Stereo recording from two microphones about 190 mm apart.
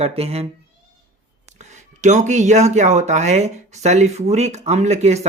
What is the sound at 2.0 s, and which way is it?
Speech, 40° right (ahead or behind).